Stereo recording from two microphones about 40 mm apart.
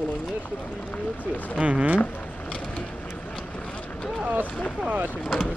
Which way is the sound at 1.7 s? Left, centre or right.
Right.